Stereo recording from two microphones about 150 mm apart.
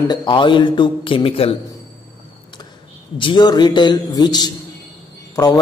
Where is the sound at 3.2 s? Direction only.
30° left (ahead or behind).